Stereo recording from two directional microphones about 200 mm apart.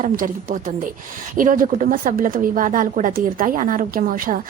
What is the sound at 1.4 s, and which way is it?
A woman's voice, 40° right (ahead or behind).